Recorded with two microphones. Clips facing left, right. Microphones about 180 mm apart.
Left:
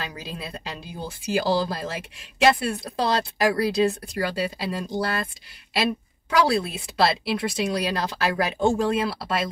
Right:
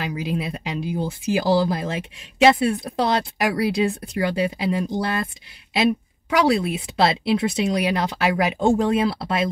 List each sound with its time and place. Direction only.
0.0 s speech: 15° right (ahead or behind)